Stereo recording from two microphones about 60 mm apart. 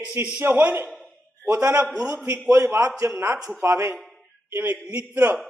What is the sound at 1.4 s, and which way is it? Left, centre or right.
A man's voice, right.